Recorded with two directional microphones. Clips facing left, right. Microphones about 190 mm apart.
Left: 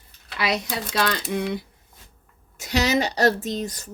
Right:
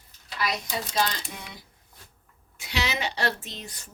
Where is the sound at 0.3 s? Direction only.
75° left (ahead or behind).